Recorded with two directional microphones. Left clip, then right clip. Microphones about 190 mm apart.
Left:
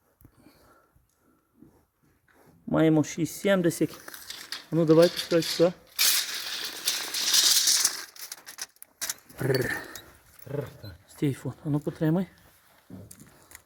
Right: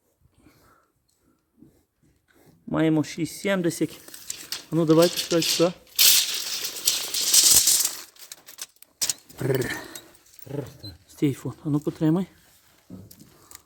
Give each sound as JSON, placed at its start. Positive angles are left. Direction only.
{"t": 2.6, "sound": "speech", "side_deg": 20}
{"t": 4.7, "sound": "speech", "side_deg": 0}
{"t": 6.0, "sound": "rattle", "side_deg": -35}
{"t": 9.3, "sound": "dog", "side_deg": 0}
{"t": 11.2, "sound": "speech", "side_deg": -10}